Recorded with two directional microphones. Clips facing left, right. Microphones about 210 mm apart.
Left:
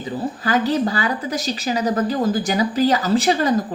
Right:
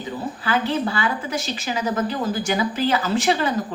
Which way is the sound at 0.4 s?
40° left (ahead or behind).